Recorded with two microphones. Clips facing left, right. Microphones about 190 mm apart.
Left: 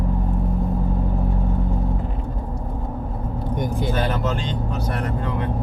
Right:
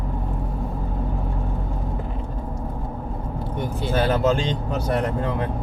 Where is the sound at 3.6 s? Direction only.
15° left (ahead or behind).